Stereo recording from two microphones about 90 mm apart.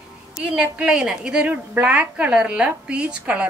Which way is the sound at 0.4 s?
15° right (ahead or behind).